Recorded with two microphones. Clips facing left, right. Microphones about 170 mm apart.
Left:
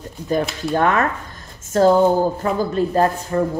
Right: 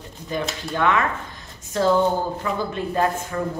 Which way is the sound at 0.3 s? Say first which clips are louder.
Left 7 dB; 45° left (ahead or behind).